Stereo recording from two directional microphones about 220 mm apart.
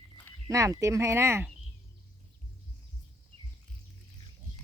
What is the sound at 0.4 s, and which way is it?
Speech, 15° right (ahead or behind).